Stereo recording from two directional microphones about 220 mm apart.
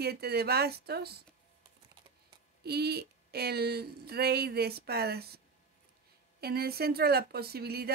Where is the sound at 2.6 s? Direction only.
45° right (ahead or behind).